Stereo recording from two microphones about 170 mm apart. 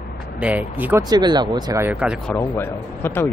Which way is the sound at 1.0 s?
25° right (ahead or behind).